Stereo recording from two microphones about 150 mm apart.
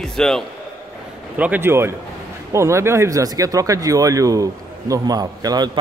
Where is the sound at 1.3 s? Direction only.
10° right (ahead or behind).